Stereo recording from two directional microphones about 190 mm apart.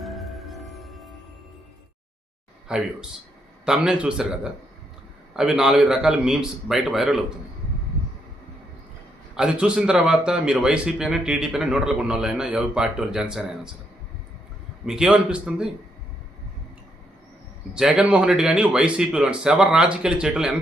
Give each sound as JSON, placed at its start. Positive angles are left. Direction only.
{"t": 0.0, "sound": "music", "side_deg": 0}
{"t": 2.6, "sound": "speech", "side_deg": -5}
{"t": 9.3, "sound": "speech", "side_deg": -5}
{"t": 14.8, "sound": "speech", "side_deg": -5}
{"t": 17.7, "sound": "speech", "side_deg": -5}